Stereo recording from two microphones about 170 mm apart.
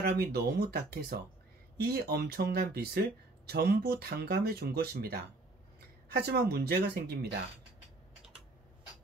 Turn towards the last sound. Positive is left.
turn(degrees=-70)  # may be behind; listen again after turning